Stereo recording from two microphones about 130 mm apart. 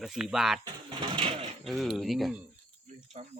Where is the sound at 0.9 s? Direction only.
40° right (ahead or behind).